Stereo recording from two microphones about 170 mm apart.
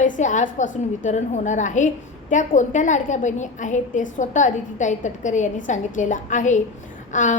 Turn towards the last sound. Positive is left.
turn(degrees=50)  # may be behind; listen again after turning